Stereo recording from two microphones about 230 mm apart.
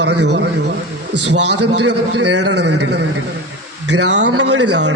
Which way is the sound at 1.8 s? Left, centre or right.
Right.